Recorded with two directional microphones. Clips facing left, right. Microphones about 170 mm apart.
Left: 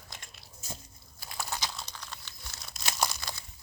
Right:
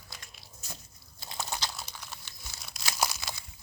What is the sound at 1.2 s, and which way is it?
Crunch, 20° right (ahead or behind).